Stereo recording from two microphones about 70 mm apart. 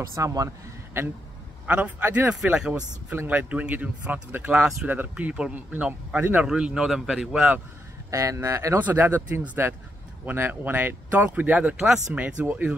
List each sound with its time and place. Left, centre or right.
0.0 s speech: right
1.7 s speech: right; by 7.5 s centre
8.1 s speech: right
8.7 s speech: right
12.4 s speech: right